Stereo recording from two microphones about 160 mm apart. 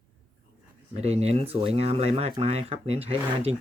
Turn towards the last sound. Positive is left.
turn(degrees=-40)  # may be behind; listen again after turning